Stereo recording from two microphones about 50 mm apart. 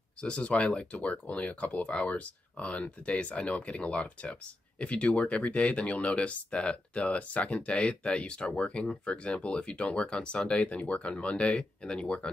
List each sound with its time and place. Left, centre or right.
0.2 s speech: left